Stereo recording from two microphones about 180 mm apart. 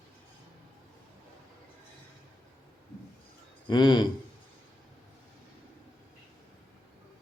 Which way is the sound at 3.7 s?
25° left (ahead or behind).